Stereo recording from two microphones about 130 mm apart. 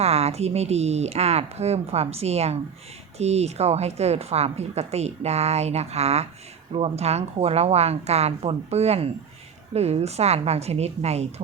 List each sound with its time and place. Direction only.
0.0 s a woman's voice: 55° right (ahead or behind)